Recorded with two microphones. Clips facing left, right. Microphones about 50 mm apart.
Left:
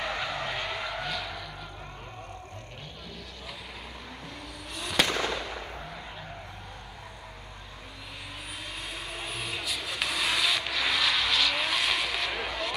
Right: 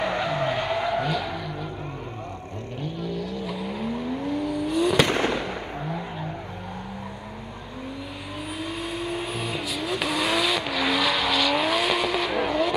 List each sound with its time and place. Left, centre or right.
0.0 s vehicle: centre
2.8 s vehicle: centre
5.0 s fireworks: right
5.3 s a sound: centre
8.6 s vehicle: centre